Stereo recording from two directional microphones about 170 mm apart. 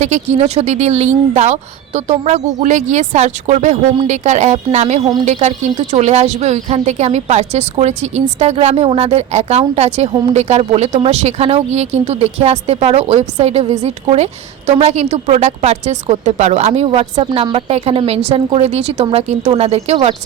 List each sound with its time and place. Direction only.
0.0 s speech: 40° right (ahead or behind)